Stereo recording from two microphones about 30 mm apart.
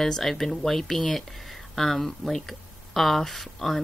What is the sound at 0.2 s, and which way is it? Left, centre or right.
Speech, centre.